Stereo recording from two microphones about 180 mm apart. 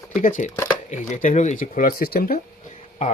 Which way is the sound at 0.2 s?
45° left (ahead or behind).